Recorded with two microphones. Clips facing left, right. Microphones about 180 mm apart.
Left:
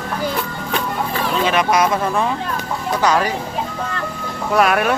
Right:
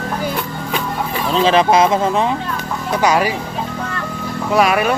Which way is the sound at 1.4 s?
30° right (ahead or behind).